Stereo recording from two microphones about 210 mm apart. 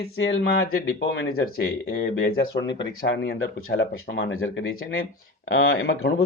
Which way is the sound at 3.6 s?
70° left (ahead or behind).